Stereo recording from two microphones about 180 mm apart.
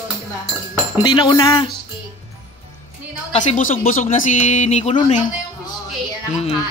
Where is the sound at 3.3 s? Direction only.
45° left (ahead or behind).